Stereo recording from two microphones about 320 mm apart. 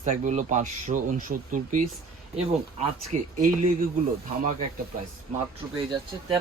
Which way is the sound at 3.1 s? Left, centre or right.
Right.